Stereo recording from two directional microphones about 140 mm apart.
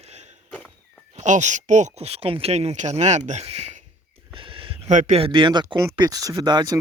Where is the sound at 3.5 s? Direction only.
45° right (ahead or behind).